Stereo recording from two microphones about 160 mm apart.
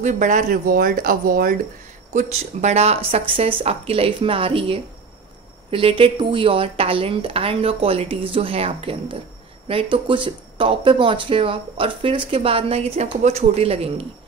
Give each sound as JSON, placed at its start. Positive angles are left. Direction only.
{"t": 0.0, "sound": "speech", "side_deg": -50}
{"t": 2.1, "sound": "speech", "side_deg": -45}